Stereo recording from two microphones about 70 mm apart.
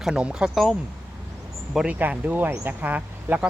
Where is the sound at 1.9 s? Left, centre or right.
Right.